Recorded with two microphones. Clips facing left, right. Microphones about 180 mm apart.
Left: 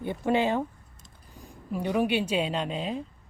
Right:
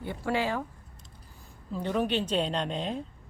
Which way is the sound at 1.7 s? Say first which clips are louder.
Left 3 dB; 10° left (ahead or behind).